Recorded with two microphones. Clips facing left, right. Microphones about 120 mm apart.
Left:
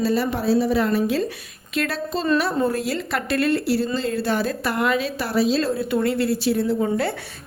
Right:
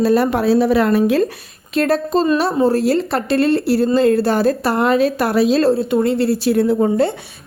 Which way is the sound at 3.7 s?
50° right (ahead or behind).